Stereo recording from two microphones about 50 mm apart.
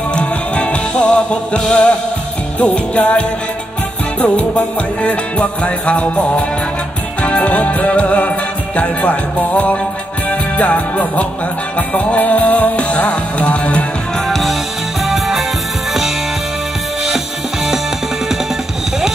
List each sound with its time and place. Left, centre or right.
0.1 s music: left
4.6 s music: left
9.5 s music: left
14.3 s music: centre